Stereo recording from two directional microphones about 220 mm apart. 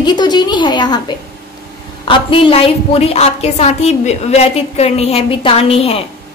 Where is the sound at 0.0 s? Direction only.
20° left (ahead or behind).